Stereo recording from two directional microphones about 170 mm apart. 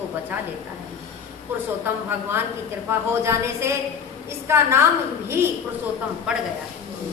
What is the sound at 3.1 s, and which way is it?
A woman's voice, 15° right (ahead or behind).